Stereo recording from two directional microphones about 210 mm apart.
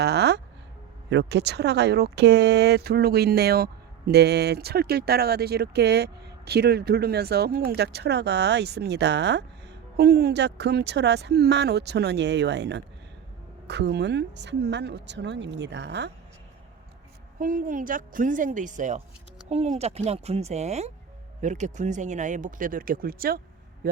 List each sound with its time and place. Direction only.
0.0 s a sound: 55° right (ahead or behind)
1.1 s speech: 55° right (ahead or behind)
17.4 s speech: 40° right (ahead or behind)